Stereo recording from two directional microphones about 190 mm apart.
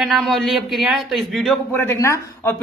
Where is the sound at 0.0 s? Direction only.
Centre (ahead or behind).